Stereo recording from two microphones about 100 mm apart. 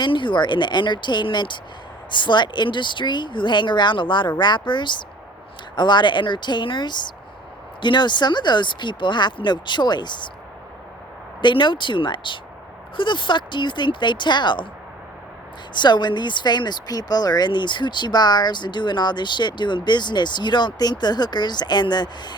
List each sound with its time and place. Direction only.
0.0 s speech: 50° left (ahead or behind)
11.4 s speech: 50° left (ahead or behind)
15.7 s speech: 50° left (ahead or behind)